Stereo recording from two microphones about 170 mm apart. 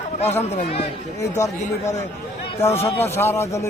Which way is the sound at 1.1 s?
15° left (ahead or behind).